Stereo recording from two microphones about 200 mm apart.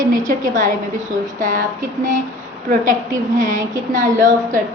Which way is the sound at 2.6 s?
40° right (ahead or behind).